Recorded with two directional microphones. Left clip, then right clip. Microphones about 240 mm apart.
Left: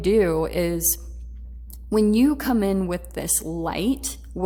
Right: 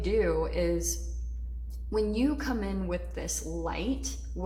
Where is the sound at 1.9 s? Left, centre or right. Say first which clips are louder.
Left 9 dB; left.